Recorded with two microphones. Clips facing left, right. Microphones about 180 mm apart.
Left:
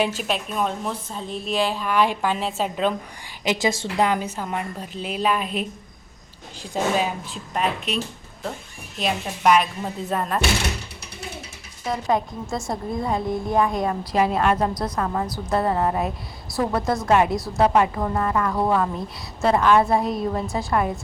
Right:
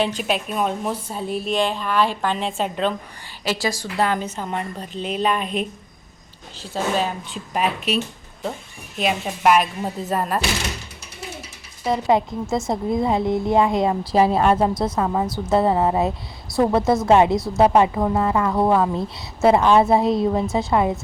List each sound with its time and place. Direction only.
0.0 s a woman's voice: 5° left (ahead or behind)
3.4 s a woman's voice: 20° left (ahead or behind)
7.5 s a woman's voice: 5° right (ahead or behind)
11.9 s a woman's voice: 20° right (ahead or behind)
16.8 s a woman's voice: 5° right (ahead or behind)
17.1 s a woman's voice: 25° right (ahead or behind)